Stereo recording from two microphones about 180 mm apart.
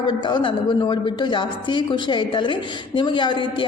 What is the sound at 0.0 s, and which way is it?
A woman's voice, 25° left (ahead or behind).